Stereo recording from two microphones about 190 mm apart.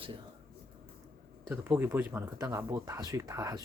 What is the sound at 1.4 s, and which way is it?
Speech, 10° right (ahead or behind).